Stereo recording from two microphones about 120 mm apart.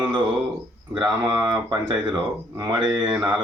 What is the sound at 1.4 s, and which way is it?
Speech, 35° right (ahead or behind).